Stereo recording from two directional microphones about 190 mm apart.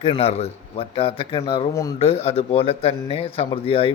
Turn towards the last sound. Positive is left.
turn(degrees=30)  # may be behind; listen again after turning